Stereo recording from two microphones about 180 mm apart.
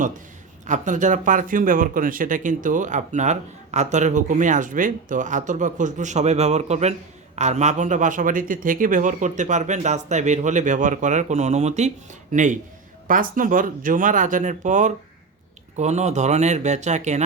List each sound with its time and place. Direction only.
0.7 s speech: 45° right (ahead or behind)